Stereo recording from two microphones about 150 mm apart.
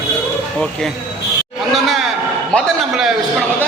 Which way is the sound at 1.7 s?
Centre (ahead or behind).